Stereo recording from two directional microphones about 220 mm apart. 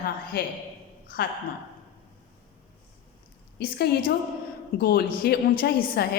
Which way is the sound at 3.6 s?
50° left (ahead or behind).